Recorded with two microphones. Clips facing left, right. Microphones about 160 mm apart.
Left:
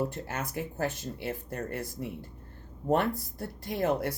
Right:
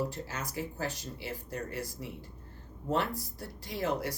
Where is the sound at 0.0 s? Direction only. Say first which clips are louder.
Left 3 dB; 55° left (ahead or behind).